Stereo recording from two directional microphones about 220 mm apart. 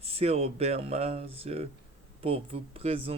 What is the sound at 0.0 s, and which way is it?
Speech, 25° right (ahead or behind).